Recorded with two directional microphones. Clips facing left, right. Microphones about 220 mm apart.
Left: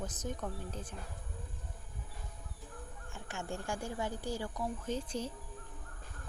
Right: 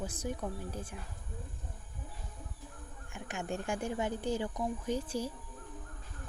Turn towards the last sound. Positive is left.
turn(degrees=-10)  # may be behind; listen again after turning